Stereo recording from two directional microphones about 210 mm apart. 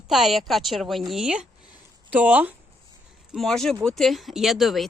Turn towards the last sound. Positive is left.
turn(degrees=0)  # may be behind; listen again after turning